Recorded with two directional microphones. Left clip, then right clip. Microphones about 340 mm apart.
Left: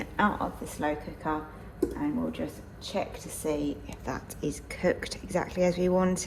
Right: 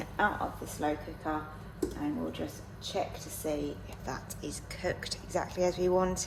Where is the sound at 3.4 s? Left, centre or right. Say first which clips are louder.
Left 4 dB; left.